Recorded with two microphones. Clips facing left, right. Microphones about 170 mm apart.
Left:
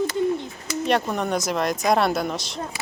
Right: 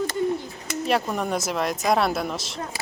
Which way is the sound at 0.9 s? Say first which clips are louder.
Left 1 dB; 5° right (ahead or behind).